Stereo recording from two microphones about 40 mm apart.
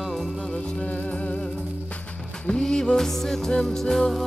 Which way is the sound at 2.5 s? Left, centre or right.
Centre.